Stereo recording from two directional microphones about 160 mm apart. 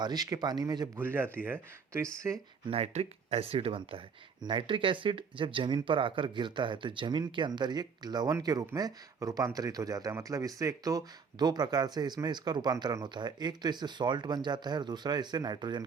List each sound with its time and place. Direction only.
0.0 s speech: 25° right (ahead or behind)
0.9 s speech: 15° right (ahead or behind)
2.6 s speech: 40° right (ahead or behind)